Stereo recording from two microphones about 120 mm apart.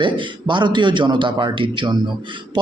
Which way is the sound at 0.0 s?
40° right (ahead or behind).